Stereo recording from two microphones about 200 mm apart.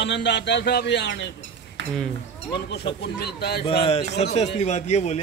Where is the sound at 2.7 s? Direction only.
55° left (ahead or behind).